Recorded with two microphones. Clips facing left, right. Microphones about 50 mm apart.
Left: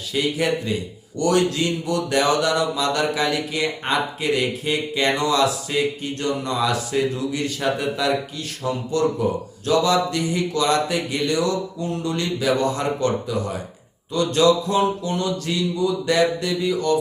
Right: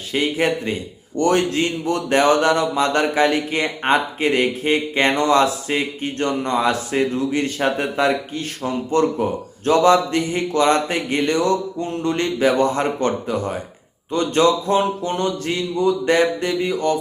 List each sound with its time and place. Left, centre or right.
0.1 s a man's voice: right